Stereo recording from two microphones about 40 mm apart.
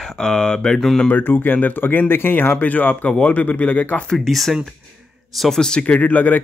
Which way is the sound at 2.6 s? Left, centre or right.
Left.